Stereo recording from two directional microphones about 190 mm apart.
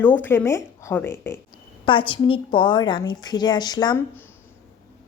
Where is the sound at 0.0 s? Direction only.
10° left (ahead or behind).